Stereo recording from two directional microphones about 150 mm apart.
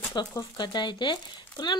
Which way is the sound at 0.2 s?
30° left (ahead or behind).